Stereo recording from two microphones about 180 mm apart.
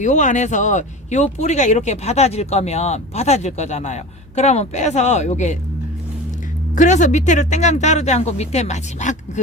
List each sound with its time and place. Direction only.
0.0 s speech: 45° left (ahead or behind)
6.7 s speech: 45° left (ahead or behind)